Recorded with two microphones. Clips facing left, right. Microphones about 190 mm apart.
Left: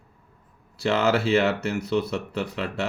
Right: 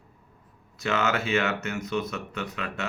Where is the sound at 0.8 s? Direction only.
35° left (ahead or behind).